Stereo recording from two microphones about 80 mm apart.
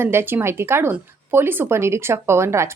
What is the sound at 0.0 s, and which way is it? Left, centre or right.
Speech, right.